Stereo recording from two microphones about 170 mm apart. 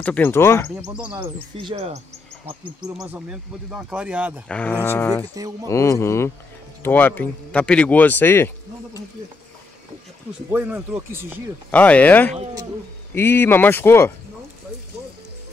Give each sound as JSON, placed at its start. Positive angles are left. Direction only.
{"t": 0.0, "sound": "speech", "side_deg": 10}
{"t": 1.7, "sound": "speech", "side_deg": -35}
{"t": 3.2, "sound": "speech", "side_deg": -5}
{"t": 4.5, "sound": "speech", "side_deg": 10}
{"t": 5.3, "sound": "speech", "side_deg": -20}
{"t": 5.7, "sound": "speech", "side_deg": 15}
{"t": 10.5, "sound": "speech", "side_deg": -10}
{"t": 11.7, "sound": "speech", "side_deg": 10}